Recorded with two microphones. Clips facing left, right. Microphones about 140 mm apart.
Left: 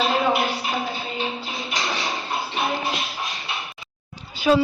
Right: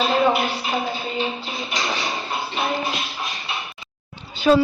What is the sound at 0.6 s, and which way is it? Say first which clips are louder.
Music: right 2 dB; centre (ahead or behind).